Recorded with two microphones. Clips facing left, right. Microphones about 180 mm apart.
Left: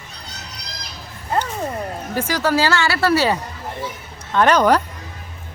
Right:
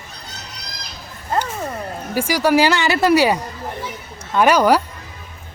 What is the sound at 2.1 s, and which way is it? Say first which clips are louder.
Speech: right 4 dB; 10° right (ahead or behind).